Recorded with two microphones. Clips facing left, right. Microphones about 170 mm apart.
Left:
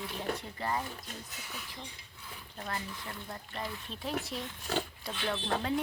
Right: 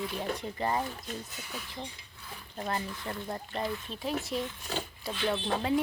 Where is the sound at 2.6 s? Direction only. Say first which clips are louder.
Right 5 dB; 30° right (ahead or behind).